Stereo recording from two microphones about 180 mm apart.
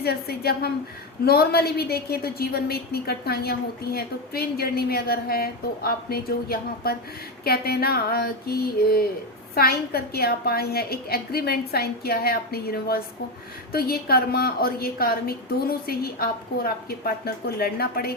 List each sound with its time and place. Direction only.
0.0 s a woman's voice: 60° left (ahead or behind)